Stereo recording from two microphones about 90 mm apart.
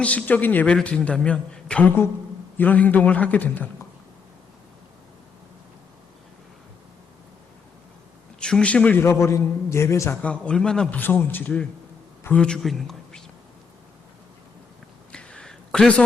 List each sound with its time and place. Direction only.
0.0 s a man's voice: 15° left (ahead or behind)
8.4 s a man's voice: 10° left (ahead or behind)
9.0 s a man's voice: 30° left (ahead or behind)
10.2 s a man's voice: 10° left (ahead or behind)
11.0 s a man's voice: 20° left (ahead or behind)
12.4 s a man's voice: 5° left (ahead or behind)
15.1 s a sound: 10° left (ahead or behind)